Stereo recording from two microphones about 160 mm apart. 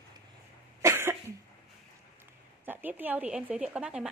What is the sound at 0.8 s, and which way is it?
Cough, 15° right (ahead or behind).